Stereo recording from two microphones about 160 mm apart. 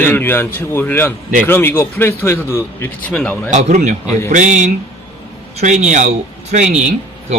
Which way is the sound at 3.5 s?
45° right (ahead or behind).